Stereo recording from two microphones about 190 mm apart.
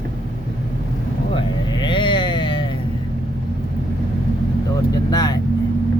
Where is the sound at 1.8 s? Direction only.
25° left (ahead or behind).